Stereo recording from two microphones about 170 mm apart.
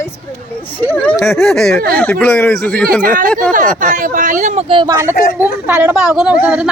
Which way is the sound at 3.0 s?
50° right (ahead or behind).